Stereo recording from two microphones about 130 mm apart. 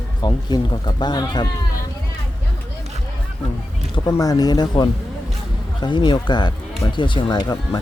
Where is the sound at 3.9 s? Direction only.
30° left (ahead or behind).